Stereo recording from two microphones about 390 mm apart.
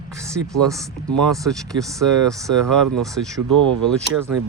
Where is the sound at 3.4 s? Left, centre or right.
Right.